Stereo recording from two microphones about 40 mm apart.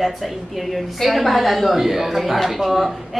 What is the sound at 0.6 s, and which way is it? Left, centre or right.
A woman's voice, centre.